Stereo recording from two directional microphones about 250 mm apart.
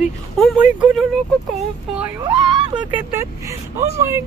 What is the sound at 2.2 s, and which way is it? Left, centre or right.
Speech, centre.